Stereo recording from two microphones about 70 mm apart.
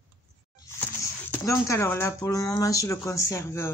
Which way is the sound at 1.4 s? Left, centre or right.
Left.